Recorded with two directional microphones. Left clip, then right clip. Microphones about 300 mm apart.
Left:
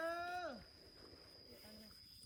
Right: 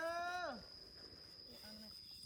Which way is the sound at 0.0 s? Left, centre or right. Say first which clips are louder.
Right 1 dB; right.